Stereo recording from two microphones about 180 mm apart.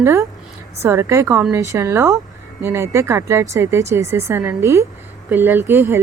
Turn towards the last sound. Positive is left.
turn(degrees=-15)  # may be behind; listen again after turning